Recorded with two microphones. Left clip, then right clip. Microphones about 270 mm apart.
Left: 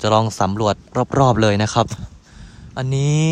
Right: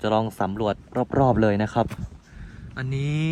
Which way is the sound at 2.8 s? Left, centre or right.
Centre.